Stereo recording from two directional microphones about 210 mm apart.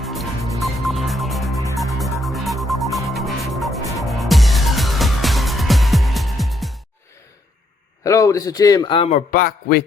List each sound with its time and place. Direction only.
0.0 s music: centre (ahead or behind)
8.0 s a man's voice: 15° left (ahead or behind); by 9.8 s 45° left (ahead or behind)